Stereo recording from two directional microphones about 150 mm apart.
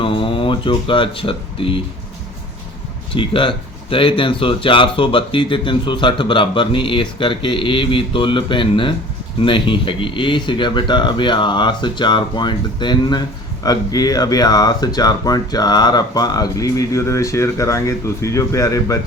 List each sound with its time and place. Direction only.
0.0 s speech: 35° left (ahead or behind)
3.2 s speech: 35° left (ahead or behind)